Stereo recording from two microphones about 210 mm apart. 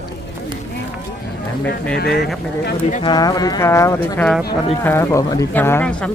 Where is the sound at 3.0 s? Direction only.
20° left (ahead or behind).